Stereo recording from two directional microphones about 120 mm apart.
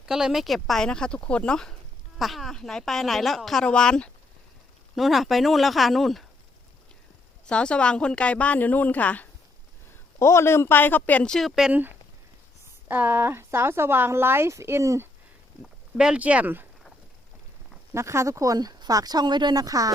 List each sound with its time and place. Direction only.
0.0 s speech: 5° right (ahead or behind)
7.4 s a woman's voice: 10° left (ahead or behind)
12.9 s speech: 15° right (ahead or behind)
15.6 s speech: 5° right (ahead or behind)
17.9 s speech: 25° right (ahead or behind)